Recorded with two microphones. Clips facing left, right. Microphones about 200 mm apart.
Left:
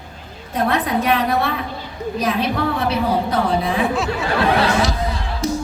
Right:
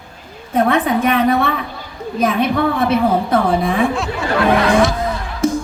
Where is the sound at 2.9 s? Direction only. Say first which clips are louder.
Right 4 dB; 55° right (ahead or behind).